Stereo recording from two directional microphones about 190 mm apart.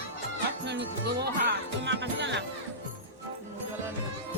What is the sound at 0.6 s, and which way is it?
Music, 60° right (ahead or behind).